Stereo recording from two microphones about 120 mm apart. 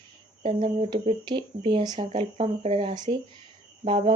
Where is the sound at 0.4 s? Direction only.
40° right (ahead or behind).